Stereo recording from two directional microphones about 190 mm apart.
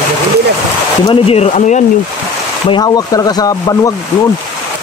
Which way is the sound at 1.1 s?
30° left (ahead or behind).